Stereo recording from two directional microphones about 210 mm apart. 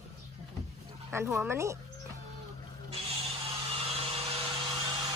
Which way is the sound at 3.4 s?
25° right (ahead or behind).